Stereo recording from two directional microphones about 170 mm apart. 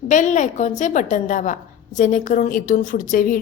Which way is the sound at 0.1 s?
45° left (ahead or behind).